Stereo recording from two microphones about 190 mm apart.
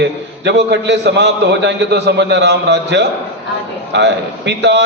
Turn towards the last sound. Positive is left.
turn(degrees=-65)  # may be behind; listen again after turning